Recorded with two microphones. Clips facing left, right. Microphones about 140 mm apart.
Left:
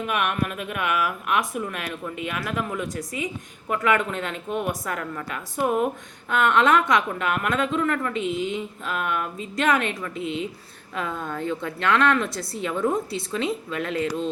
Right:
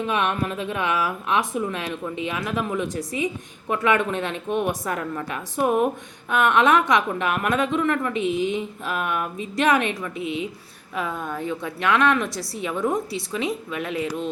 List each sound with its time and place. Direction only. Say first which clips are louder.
0.0 s a woman's voice: right 2 dB; 25° right (ahead or behind)